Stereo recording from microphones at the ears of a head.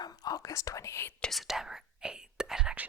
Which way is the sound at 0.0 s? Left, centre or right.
Left.